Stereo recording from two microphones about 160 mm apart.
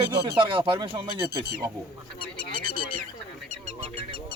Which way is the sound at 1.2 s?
80° right.